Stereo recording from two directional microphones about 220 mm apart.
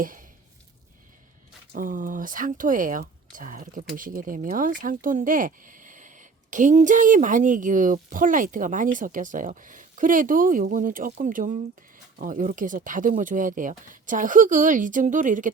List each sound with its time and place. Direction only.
1.7 s speech: 40° right (ahead or behind)